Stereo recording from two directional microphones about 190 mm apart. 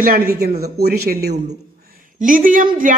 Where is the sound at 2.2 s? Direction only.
45° right (ahead or behind).